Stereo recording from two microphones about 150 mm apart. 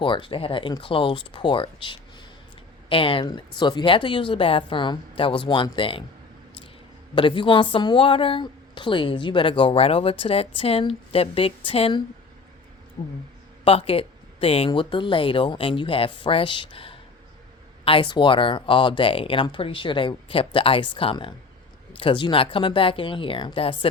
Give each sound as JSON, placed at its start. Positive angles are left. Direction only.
{"t": 0.0, "sound": "a woman's voice", "side_deg": 35}
{"t": 7.2, "sound": "a woman's voice", "side_deg": 35}
{"t": 13.7, "sound": "a woman's voice", "side_deg": 40}